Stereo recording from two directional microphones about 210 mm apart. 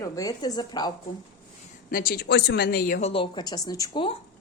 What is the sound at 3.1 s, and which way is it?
Speech, 25° left (ahead or behind).